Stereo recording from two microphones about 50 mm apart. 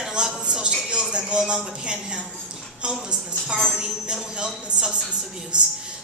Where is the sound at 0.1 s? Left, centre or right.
Centre.